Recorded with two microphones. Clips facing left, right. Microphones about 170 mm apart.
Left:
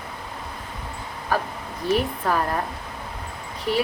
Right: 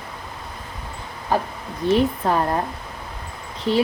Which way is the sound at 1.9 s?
25° right (ahead or behind).